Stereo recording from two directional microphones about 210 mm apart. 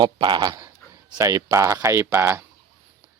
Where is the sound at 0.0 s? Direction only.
20° right (ahead or behind).